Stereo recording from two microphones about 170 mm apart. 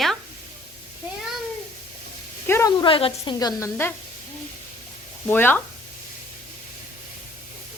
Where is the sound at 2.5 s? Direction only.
15° left (ahead or behind).